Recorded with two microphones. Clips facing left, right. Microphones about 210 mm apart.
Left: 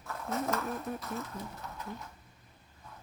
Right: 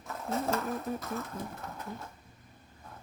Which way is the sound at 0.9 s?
Centre (ahead or behind).